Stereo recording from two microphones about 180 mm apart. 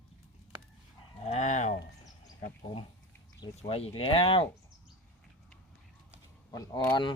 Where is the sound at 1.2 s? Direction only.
40° left (ahead or behind).